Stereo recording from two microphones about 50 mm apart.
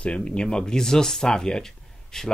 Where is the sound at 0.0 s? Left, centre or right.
Left.